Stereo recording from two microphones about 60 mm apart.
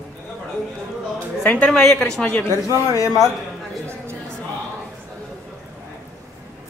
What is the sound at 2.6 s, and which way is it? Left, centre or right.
Speech, left.